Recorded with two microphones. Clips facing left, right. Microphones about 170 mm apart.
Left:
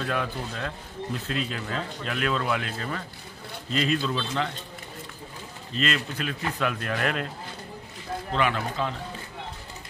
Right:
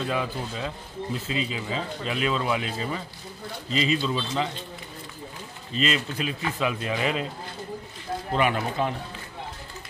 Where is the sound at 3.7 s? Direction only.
50° left (ahead or behind).